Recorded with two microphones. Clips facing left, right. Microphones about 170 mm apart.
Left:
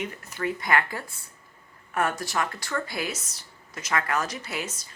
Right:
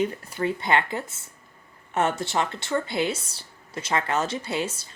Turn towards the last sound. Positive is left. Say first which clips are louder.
# right 6 dB
turn(degrees=-30)  # may be behind; listen again after turning